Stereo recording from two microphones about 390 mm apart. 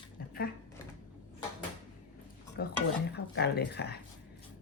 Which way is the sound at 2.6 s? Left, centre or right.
Left.